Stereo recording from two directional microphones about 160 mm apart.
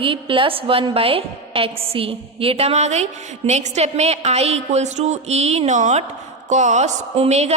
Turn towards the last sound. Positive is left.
turn(degrees=-45)  # may be behind; listen again after turning